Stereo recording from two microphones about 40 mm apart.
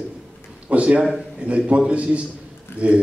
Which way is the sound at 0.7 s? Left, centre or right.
Right.